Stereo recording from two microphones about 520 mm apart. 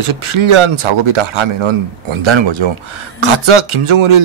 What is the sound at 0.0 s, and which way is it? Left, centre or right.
A man's voice, right.